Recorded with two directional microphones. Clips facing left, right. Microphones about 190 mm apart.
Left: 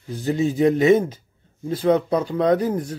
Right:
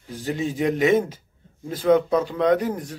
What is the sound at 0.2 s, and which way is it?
Speech, 35° left (ahead or behind).